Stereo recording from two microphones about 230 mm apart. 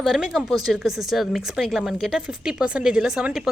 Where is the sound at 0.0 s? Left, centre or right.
Centre.